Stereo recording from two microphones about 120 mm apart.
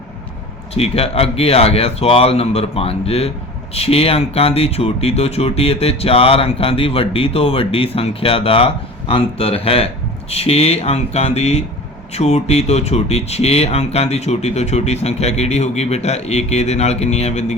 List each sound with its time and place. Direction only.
0.7 s speech: 55° left (ahead or behind)